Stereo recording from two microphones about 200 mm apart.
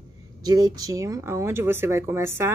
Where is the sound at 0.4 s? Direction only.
20° right (ahead or behind).